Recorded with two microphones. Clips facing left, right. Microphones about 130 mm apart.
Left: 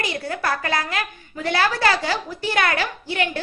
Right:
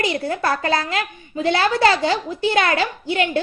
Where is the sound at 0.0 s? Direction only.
25° right (ahead or behind).